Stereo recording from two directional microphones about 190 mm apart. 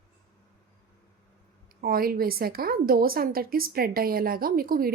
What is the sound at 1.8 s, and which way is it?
Speech, 50° right (ahead or behind).